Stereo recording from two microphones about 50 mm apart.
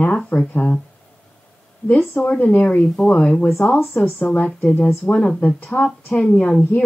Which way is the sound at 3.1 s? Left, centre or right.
Left.